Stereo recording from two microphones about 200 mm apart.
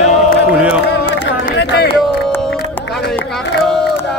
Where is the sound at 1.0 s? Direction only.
60° left (ahead or behind).